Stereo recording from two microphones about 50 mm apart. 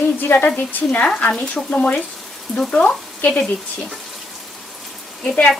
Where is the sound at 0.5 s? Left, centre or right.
Left.